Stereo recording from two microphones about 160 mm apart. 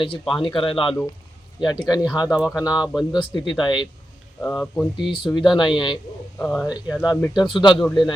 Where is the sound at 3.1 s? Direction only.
30° left (ahead or behind).